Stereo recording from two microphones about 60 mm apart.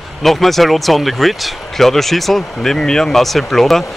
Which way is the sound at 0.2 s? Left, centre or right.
Centre.